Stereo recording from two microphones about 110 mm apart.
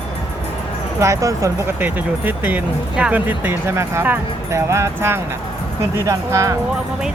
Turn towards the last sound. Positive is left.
turn(degrees=-30)  # may be behind; listen again after turning